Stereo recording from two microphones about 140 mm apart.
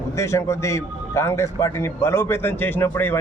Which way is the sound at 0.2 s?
20° left (ahead or behind).